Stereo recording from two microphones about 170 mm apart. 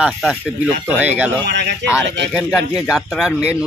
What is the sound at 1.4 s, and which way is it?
Speech, 85° right.